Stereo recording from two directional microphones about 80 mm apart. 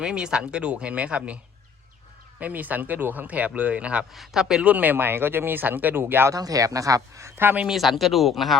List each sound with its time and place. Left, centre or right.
0.0 s speech: centre
2.4 s speech: right
4.1 s speech: centre
4.7 s speech: right
6.3 s speech: right
7.7 s speech: centre